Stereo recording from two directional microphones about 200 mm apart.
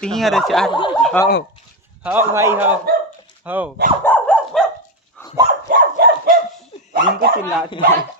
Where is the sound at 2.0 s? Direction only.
10° right (ahead or behind).